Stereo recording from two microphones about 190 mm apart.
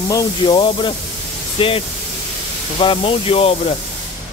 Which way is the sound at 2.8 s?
25° left (ahead or behind).